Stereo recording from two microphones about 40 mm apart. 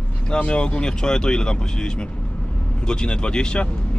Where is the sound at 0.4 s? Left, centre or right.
Left.